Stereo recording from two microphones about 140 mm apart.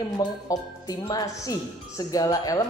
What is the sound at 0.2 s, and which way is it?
Speech, 25° left (ahead or behind).